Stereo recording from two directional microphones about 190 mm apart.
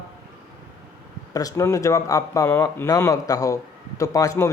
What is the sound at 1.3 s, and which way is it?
A man's voice, 20° left (ahead or behind).